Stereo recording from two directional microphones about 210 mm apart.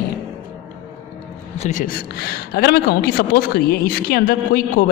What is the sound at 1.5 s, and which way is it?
Speech, 35° left (ahead or behind).